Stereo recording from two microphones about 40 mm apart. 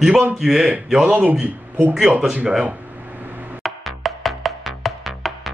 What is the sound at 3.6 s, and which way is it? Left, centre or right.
Music, centre.